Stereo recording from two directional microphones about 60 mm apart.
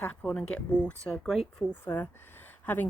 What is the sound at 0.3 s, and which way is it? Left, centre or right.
Speech, centre.